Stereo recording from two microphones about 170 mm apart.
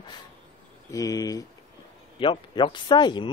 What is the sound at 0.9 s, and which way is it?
Speech, 20° left (ahead or behind).